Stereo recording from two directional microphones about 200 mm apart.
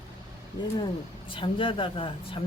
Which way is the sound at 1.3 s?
25° left (ahead or behind).